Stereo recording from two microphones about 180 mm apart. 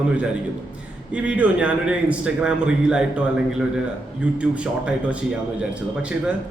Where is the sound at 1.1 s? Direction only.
10° right (ahead or behind).